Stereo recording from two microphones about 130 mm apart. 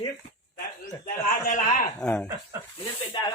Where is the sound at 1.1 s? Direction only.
90° left.